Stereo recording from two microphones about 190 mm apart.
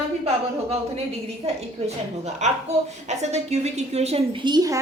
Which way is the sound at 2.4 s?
35° right (ahead or behind).